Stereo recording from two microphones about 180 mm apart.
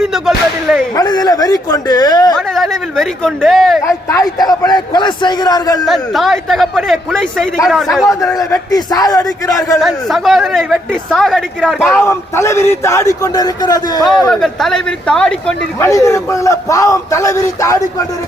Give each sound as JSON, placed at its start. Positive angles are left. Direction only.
{"t": 0.0, "sound": "speech", "side_deg": 0}
{"t": 0.9, "sound": "a man's voice", "side_deg": 20}
{"t": 2.3, "sound": "speech", "side_deg": 0}
{"t": 4.4, "sound": "a man's voice", "side_deg": 20}
{"t": 5.8, "sound": "speech", "side_deg": 0}
{"t": 8.4, "sound": "a man's voice", "side_deg": 20}
{"t": 9.8, "sound": "speech", "side_deg": 0}
{"t": 11.9, "sound": "a man's voice", "side_deg": 15}
{"t": 14.3, "sound": "speech", "side_deg": 0}
{"t": 15.9, "sound": "a man's voice", "side_deg": 15}